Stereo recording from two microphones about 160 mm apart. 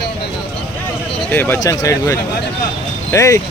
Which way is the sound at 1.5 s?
20° left (ahead or behind).